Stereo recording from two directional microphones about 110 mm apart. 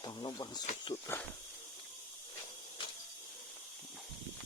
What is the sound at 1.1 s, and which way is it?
Speech, 25° left (ahead or behind).